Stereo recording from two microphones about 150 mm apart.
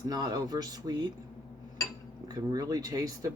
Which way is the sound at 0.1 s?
25° right (ahead or behind).